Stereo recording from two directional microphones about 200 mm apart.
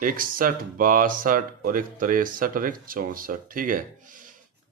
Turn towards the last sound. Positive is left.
turn(degrees=-40)  # may be behind; listen again after turning